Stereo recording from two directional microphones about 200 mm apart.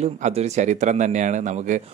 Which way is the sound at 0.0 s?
35° right (ahead or behind).